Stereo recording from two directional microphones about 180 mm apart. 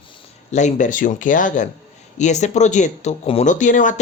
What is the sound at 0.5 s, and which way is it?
Speech, 40° left (ahead or behind).